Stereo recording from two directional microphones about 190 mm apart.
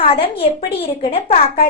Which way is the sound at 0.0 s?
30° left (ahead or behind).